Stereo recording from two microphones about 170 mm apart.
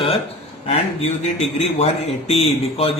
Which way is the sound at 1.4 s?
40° left (ahead or behind).